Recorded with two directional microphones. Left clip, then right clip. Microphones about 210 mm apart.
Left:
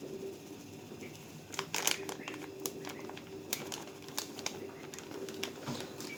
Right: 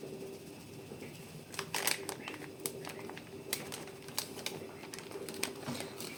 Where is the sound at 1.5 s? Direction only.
10° left (ahead or behind).